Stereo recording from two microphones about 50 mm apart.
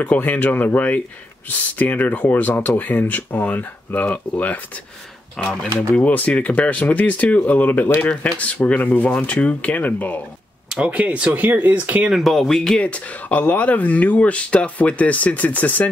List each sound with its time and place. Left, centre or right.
0.0 s speech: left
5.4 s speech: centre
5.8 s speech: left
10.8 s speech: right
11.4 s speech: right
12.2 s speech: centre
12.8 s speech: left